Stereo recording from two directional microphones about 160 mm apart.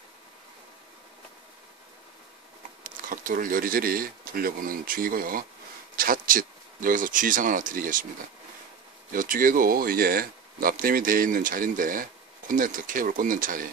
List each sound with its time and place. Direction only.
2.8 s speech: 60° right (ahead or behind)
9.1 s speech: 60° right (ahead or behind)